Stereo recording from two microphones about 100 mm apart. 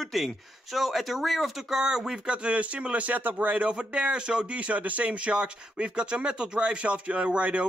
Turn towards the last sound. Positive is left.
turn(degrees=-10)  # may be behind; listen again after turning